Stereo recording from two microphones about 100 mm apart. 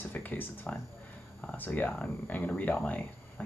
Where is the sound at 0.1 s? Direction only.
20° left (ahead or behind).